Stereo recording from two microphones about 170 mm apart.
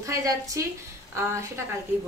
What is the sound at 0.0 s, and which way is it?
Speech, 20° right (ahead or behind).